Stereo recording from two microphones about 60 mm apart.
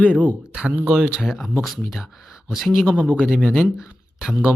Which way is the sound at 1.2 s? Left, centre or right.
Centre.